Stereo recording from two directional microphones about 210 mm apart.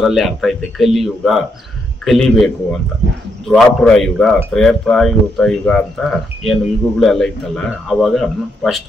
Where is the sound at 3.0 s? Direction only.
55° right (ahead or behind).